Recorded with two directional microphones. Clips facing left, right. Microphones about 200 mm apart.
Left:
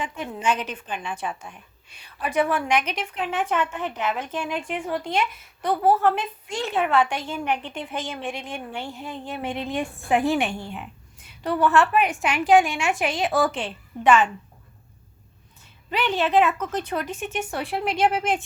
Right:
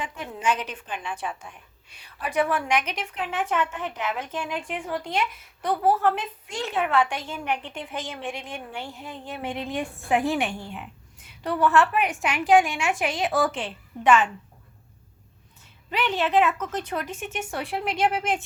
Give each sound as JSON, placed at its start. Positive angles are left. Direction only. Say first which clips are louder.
{"t": 0.0, "sound": "a woman's voice", "louder": "left 2 dB", "side_deg": 25}
{"t": 15.9, "sound": "speech", "louder": "left 2 dB", "side_deg": 30}